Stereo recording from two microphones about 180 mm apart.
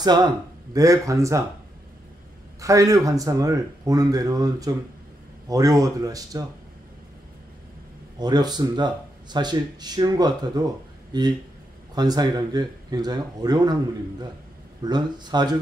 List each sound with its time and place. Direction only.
0.0 s speech: 25° right (ahead or behind)
2.6 s speech: 20° right (ahead or behind)
8.2 s speech: 25° right (ahead or behind)
14.8 s speech: 25° right (ahead or behind)